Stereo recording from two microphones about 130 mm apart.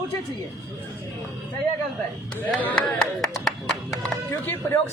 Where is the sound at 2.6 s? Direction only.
10° left (ahead or behind).